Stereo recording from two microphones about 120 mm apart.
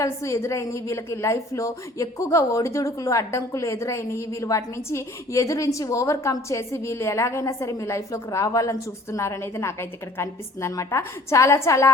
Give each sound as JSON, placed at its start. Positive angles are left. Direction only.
{"t": 0.0, "sound": "a woman's voice", "side_deg": 25}